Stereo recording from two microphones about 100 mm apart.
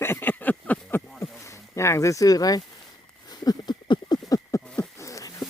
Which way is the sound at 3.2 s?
40° left (ahead or behind).